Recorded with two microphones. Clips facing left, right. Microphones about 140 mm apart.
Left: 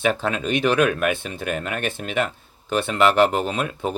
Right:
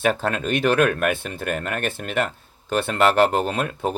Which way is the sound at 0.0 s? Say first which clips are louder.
Even; 50° right (ahead or behind).